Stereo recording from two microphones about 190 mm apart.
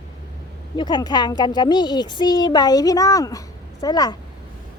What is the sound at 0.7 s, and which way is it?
A child's voice, 25° left (ahead or behind).